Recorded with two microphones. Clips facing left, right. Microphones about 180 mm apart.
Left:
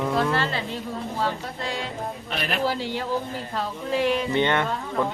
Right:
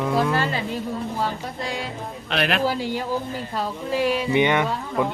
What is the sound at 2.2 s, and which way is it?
Speech, 80° right.